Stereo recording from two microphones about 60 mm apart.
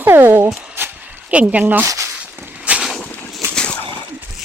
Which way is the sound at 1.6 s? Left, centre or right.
Right.